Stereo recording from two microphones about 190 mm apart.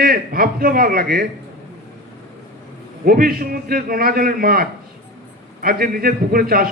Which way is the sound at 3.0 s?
50° right (ahead or behind).